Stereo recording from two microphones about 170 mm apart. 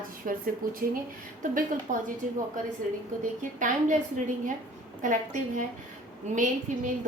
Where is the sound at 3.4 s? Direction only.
50° right (ahead or behind).